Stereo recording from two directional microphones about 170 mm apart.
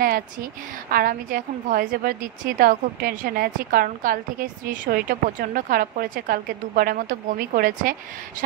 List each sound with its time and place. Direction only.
0.0 s a woman's voice: 60° right (ahead or behind)